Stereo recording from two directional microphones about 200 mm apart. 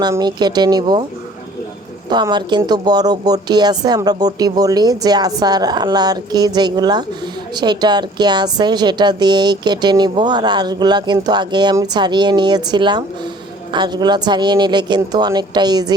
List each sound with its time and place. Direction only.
0.0 s a woman's voice: 20° right (ahead or behind)
2.0 s a woman's voice: 20° right (ahead or behind)